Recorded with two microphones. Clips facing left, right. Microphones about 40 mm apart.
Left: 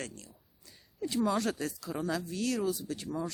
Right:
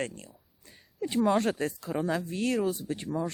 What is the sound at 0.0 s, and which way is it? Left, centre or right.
Speech, right.